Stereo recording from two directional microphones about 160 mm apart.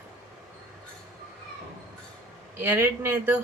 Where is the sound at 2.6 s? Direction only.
15° right (ahead or behind).